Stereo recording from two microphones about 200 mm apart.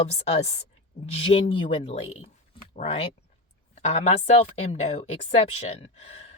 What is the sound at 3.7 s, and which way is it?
Speech, 30° left (ahead or behind).